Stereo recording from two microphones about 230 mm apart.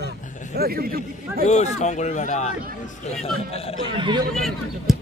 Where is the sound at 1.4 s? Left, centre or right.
Left.